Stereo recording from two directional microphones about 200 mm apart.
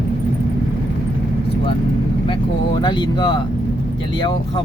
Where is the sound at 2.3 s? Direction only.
25° left (ahead or behind).